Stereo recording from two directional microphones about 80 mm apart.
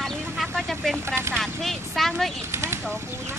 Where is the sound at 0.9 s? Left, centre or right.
Right.